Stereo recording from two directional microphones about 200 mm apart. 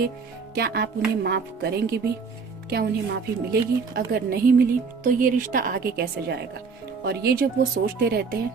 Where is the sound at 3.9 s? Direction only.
50° right (ahead or behind).